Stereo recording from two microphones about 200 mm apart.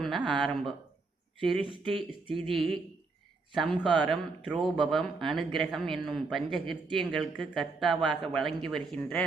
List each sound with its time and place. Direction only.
0.0 s a man's voice: centre (ahead or behind)
2.0 s speech: 25° right (ahead or behind)
2.6 s a man's voice: centre (ahead or behind)